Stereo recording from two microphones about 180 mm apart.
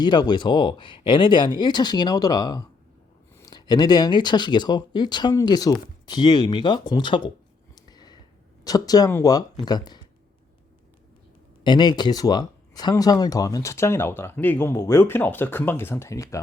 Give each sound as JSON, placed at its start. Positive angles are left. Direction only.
{"t": 0.0, "sound": "speech", "side_deg": 25}
{"t": 7.8, "sound": "a sound", "side_deg": 20}
{"t": 8.6, "sound": "speech", "side_deg": 20}
{"t": 11.6, "sound": "speech", "side_deg": 25}